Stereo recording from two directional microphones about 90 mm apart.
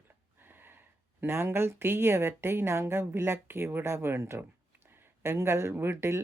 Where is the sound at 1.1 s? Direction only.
25° right (ahead or behind).